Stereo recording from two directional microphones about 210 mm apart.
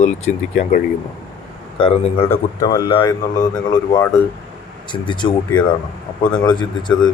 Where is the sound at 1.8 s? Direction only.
25° left (ahead or behind).